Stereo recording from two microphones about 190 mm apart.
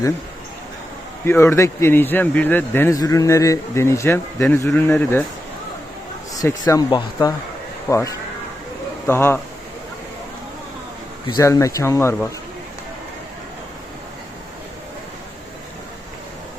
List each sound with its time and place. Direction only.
1.2 s speech: 15° left (ahead or behind)
6.7 s speech: 20° left (ahead or behind)
11.3 s speech: 20° left (ahead or behind)